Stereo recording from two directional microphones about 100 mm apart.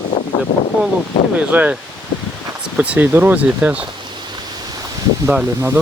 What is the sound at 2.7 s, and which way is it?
Speech, 15° right (ahead or behind).